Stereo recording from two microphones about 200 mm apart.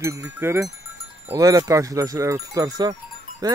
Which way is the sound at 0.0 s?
15° right (ahead or behind).